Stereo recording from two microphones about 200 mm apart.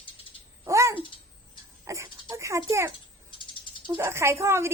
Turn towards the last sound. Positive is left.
turn(degrees=-15)  # may be behind; listen again after turning